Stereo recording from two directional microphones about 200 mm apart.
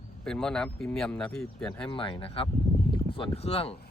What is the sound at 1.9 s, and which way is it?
Speech, 25° left (ahead or behind).